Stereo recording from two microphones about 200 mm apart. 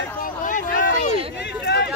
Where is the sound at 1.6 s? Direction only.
55° left (ahead or behind).